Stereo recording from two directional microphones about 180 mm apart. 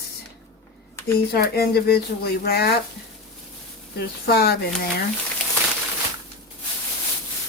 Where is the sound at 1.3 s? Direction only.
60° left (ahead or behind).